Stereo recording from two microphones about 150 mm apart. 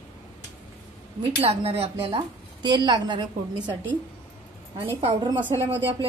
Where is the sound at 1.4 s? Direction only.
40° right (ahead or behind).